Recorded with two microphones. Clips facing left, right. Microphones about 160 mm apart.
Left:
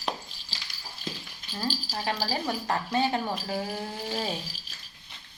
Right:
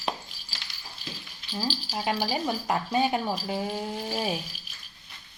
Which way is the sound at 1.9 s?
15° right (ahead or behind).